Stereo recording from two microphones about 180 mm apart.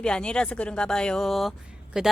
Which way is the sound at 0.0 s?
5° left (ahead or behind).